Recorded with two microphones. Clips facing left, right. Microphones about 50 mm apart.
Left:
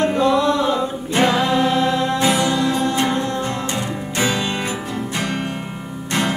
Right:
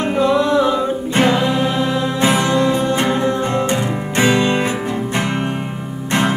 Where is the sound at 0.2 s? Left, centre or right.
Centre.